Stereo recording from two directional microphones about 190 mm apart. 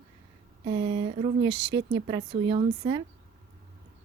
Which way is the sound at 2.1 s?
25° right (ahead or behind).